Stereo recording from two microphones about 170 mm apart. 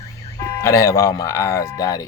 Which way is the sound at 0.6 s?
20° left (ahead or behind).